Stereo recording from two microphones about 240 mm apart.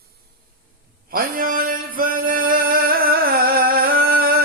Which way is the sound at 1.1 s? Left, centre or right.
Right.